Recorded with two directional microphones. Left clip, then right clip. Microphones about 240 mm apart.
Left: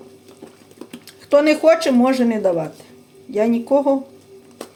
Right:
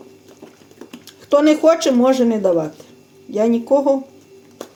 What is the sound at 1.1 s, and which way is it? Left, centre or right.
Speech, right.